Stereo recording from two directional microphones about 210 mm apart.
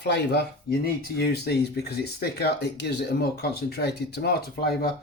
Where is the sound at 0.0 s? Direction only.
55° left (ahead or behind).